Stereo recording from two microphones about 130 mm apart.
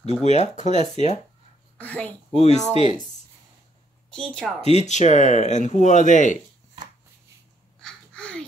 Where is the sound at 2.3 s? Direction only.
55° left (ahead or behind).